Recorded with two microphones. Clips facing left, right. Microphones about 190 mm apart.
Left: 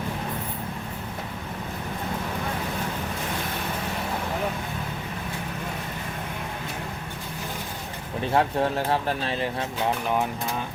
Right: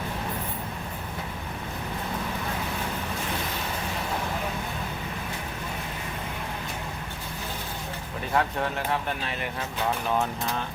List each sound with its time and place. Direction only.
8.3 s speech: 30° left (ahead or behind)
10.1 s speech: 15° left (ahead or behind)